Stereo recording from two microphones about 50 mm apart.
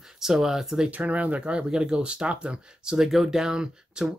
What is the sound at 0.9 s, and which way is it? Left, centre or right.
Speech, right.